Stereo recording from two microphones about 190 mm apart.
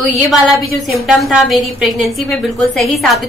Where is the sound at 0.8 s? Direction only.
Centre (ahead or behind).